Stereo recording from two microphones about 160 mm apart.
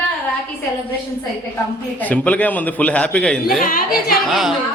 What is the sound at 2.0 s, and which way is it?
A man's voice, 10° left (ahead or behind).